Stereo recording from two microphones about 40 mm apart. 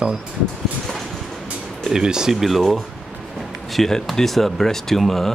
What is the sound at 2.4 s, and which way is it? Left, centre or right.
Speech, centre.